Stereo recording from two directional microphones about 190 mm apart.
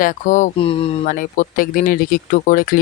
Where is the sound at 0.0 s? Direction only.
45° left (ahead or behind).